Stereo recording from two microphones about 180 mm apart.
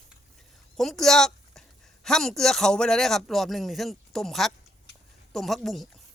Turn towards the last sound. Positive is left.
turn(degrees=0)  # may be behind; listen again after turning